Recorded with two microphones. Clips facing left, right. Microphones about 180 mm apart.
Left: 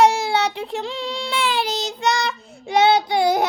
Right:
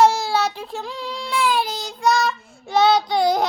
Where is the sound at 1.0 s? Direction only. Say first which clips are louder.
Right 5 dB; 90° left.